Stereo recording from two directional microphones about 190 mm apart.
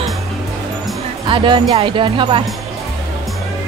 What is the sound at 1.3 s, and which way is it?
Speech, 25° right (ahead or behind).